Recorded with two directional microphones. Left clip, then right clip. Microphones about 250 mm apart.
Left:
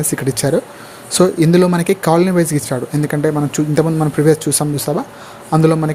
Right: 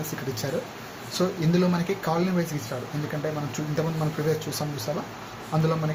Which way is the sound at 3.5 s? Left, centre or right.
Left.